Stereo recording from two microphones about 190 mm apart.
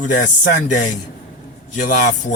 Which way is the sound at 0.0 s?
40° left (ahead or behind).